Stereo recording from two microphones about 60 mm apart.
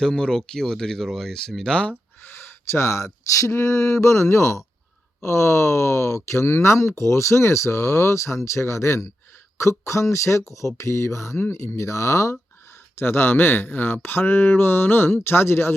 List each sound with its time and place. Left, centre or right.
0.0 s speech: centre
2.2 s speech: left
3.5 s speech: left
13.0 s speech: left